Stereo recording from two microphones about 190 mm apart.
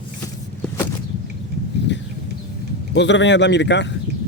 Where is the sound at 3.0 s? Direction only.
70° left (ahead or behind).